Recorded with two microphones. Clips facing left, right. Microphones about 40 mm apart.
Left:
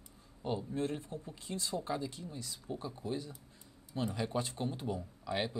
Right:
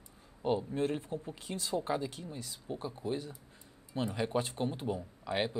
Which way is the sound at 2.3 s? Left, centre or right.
Centre.